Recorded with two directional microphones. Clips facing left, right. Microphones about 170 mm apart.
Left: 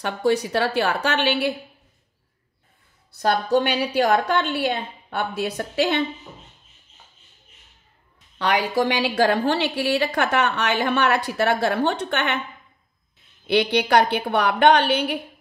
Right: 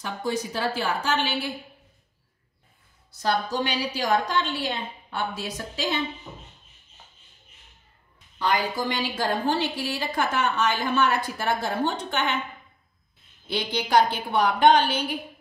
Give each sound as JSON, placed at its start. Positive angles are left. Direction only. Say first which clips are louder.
{"t": 0.0, "sound": "a woman's voice", "louder": "left 7 dB", "side_deg": 70}
{"t": 3.1, "sound": "a woman's voice", "louder": "left 6 dB", "side_deg": 60}
{"t": 8.4, "sound": "a woman's voice", "louder": "left 4 dB", "side_deg": 70}
{"t": 13.5, "sound": "a woman's voice", "louder": "left 6 dB", "side_deg": 70}